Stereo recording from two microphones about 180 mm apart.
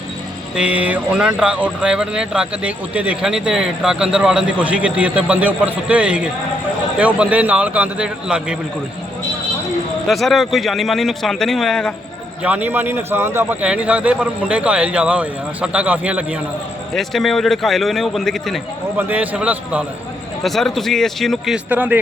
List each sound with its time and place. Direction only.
0.5 s a man's voice: 5° right (ahead or behind)
10.1 s speech: centre (ahead or behind)
12.4 s a man's voice: 10° right (ahead or behind)